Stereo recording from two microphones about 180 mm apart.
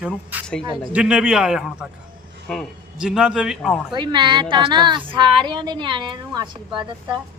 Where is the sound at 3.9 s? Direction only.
25° right (ahead or behind).